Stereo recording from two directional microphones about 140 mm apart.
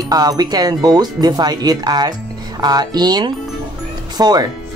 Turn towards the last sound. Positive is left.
turn(degrees=-30)  # may be behind; listen again after turning